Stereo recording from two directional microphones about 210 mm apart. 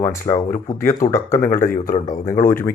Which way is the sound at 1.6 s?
40° left (ahead or behind).